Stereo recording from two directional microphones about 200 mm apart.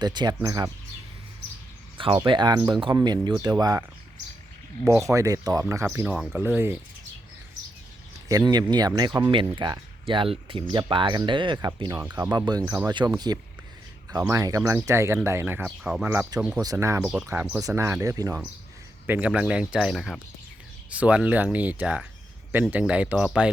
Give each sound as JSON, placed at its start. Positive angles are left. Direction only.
{"t": 0.0, "sound": "speech", "side_deg": -20}
{"t": 2.0, "sound": "speech", "side_deg": -25}
{"t": 5.0, "sound": "speech", "side_deg": -15}
{"t": 8.3, "sound": "speech", "side_deg": -20}
{"t": 16.6, "sound": "speech", "side_deg": -15}